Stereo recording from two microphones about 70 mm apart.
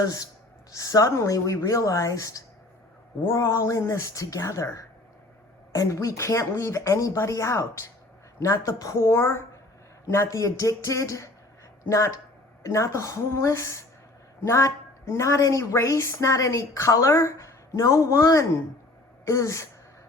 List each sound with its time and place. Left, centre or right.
0.0 s speech: left
0.7 s a woman's voice: left
3.2 s a woman's voice: left
9.0 s a woman's voice: left